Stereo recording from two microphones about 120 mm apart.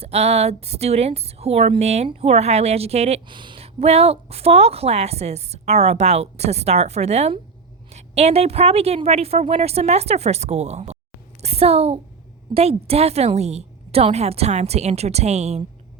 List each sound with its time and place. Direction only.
0.0 s a woman's voice: 60° right (ahead or behind)
3.2 s speech: 40° right (ahead or behind)
3.8 s a woman's voice: 60° right (ahead or behind)